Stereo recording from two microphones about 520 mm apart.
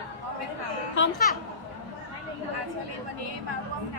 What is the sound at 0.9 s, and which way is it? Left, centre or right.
Speech, left.